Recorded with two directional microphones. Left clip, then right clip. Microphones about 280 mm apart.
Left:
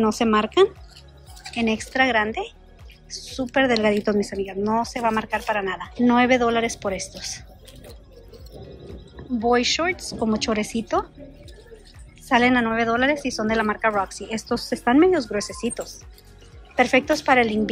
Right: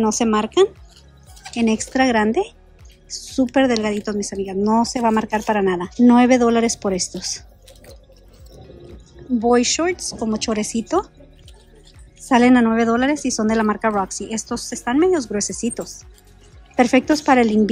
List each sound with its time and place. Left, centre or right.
0.0 s a woman's voice: centre
9.4 s a woman's voice: right
12.3 s a woman's voice: centre